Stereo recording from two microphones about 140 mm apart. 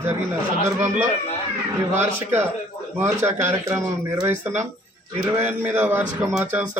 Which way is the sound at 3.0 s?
15° right (ahead or behind).